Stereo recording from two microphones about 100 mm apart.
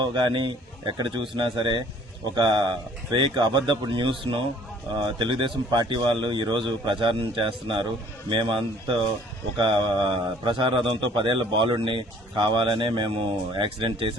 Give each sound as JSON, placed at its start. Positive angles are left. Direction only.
{"t": 0.0, "sound": "a man's voice", "side_deg": -50}